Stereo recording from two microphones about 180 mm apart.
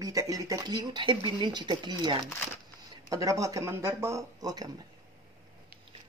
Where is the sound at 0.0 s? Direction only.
20° right (ahead or behind).